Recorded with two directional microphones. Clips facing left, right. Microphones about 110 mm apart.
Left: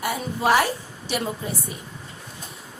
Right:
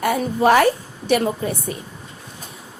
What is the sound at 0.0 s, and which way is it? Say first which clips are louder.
A woman's voice: right 7 dB; 55° right (ahead or behind).